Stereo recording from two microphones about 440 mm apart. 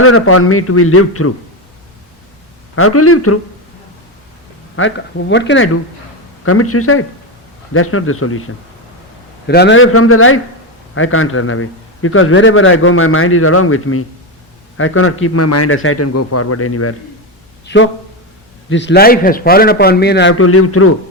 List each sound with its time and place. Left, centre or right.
0.0 s a man's voice: left
2.7 s a man's voice: left
4.8 s a man's voice: left
9.5 s a man's voice: left